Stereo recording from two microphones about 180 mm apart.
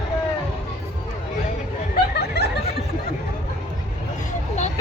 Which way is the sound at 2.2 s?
65° left (ahead or behind).